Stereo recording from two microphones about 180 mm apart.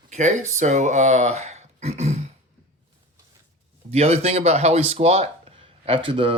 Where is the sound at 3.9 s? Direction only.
35° right (ahead or behind).